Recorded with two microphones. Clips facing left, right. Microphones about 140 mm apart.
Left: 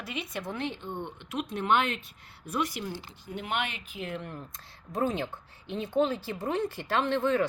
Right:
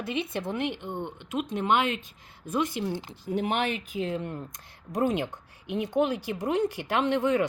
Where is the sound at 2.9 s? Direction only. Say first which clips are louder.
Right 6 dB; 90° right.